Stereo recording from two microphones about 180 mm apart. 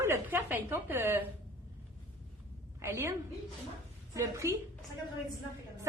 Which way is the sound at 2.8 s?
15° right (ahead or behind).